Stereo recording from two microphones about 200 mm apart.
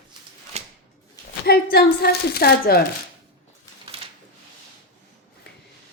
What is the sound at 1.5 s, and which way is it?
A woman's voice, 50° left (ahead or behind).